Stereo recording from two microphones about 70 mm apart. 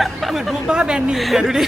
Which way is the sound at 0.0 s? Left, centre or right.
Centre.